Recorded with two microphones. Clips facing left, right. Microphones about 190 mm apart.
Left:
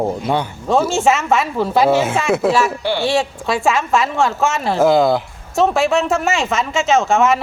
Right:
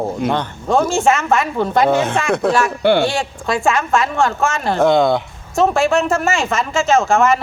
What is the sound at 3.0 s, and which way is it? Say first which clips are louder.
Speech: left 2 dB; centre (ahead or behind).